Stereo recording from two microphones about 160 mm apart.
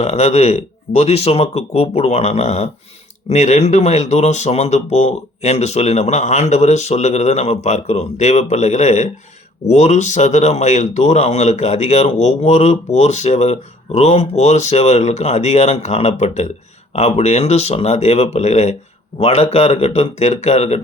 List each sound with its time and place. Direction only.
0.0 s speech: 45° left (ahead or behind)